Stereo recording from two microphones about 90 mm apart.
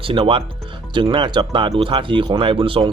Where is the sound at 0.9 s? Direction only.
60° right (ahead or behind).